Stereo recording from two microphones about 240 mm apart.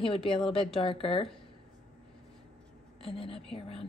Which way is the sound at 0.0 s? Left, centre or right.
Left.